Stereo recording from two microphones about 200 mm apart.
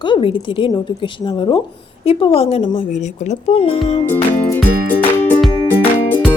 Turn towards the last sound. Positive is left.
turn(degrees=5)  # may be behind; listen again after turning